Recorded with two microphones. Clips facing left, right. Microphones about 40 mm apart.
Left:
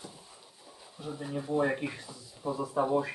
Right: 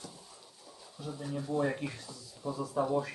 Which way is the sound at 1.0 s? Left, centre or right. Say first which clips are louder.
Left 2 dB; centre.